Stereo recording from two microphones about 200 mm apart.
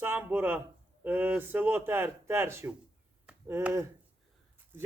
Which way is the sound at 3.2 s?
10° right (ahead or behind).